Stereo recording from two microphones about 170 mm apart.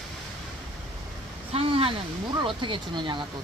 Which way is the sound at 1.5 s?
35° right (ahead or behind).